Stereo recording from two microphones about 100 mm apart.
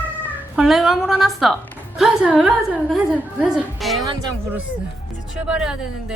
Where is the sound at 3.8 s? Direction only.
Centre (ahead or behind).